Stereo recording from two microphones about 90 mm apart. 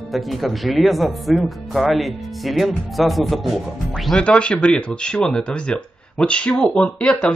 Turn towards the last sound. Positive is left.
turn(degrees=10)  # may be behind; listen again after turning